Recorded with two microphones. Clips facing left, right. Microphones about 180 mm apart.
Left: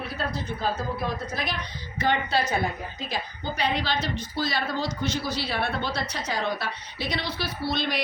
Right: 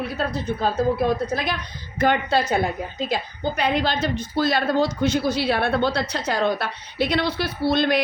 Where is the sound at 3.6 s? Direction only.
50° right (ahead or behind).